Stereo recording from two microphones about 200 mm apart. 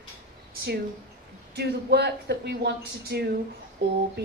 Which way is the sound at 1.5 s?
55° right (ahead or behind).